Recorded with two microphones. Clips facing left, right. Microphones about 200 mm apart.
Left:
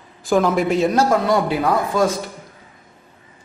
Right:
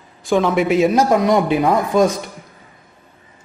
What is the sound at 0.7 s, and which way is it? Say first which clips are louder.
A man's voice: right 5 dB; 15° right (ahead or behind).